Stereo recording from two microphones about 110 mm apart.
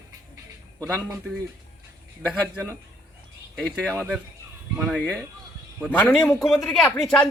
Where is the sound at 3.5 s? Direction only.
5° left (ahead or behind).